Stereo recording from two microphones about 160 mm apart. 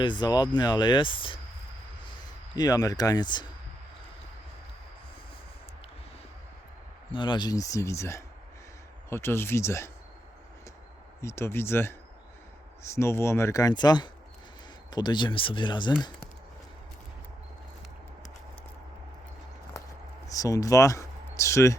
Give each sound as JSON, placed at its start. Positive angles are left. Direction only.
{"t": 0.0, "sound": "speech", "side_deg": 30}
{"t": 2.6, "sound": "speech", "side_deg": 25}
{"t": 7.1, "sound": "speech", "side_deg": 30}
{"t": 11.2, "sound": "speech", "side_deg": 15}
{"t": 20.2, "sound": "speech", "side_deg": 20}